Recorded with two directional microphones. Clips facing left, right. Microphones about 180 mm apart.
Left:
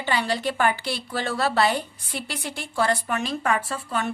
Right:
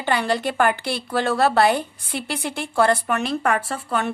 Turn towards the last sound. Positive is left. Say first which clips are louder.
# right 3 dB
turn(degrees=-60)  # may be behind; listen again after turning